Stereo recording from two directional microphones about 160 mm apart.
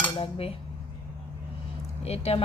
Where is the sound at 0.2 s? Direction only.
35° left (ahead or behind).